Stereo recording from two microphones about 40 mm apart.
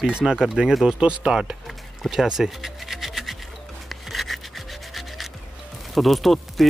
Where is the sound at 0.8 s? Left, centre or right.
Right; by 3.3 s centre.